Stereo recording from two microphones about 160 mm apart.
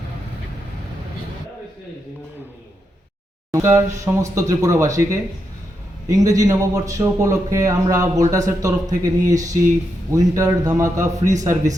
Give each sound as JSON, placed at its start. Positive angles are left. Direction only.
{"t": 3.5, "sound": "a sound", "side_deg": -20}
{"t": 3.9, "sound": "a man's voice", "side_deg": -20}
{"t": 6.1, "sound": "a man's voice", "side_deg": -20}